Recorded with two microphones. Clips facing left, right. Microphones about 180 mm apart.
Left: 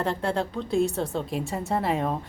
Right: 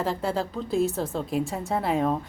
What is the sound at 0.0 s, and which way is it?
Speech, centre (ahead or behind).